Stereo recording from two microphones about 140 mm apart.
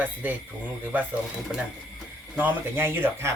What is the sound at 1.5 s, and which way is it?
Speech, 10° right (ahead or behind).